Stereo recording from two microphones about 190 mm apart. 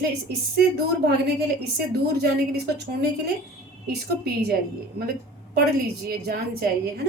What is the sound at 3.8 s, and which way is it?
Speech, 55° right (ahead or behind).